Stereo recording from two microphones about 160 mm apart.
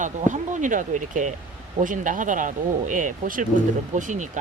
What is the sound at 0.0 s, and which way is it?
Speech, 50° right (ahead or behind).